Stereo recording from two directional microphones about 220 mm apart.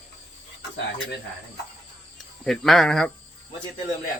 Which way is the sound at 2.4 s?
Centre (ahead or behind).